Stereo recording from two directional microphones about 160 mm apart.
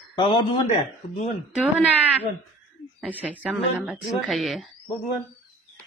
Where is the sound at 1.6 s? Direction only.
10° right (ahead or behind).